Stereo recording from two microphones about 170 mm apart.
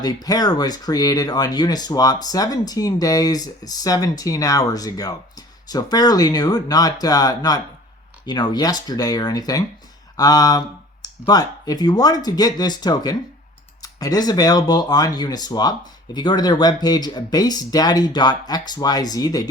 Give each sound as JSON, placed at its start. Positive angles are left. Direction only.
{"t": 0.0, "sound": "speech", "side_deg": 20}